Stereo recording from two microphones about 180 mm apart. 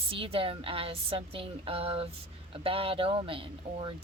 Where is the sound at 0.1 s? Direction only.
30° right (ahead or behind).